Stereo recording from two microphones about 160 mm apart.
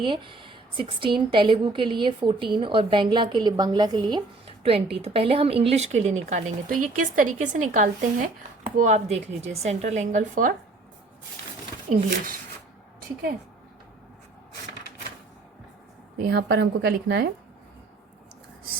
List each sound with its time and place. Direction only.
0.0 s a woman's voice: 30° right (ahead or behind); by 10.5 s 50° right (ahead or behind)
16.2 s a woman's voice: 90° right